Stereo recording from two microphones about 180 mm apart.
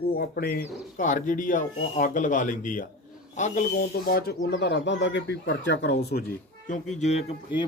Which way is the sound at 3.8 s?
55° left (ahead or behind).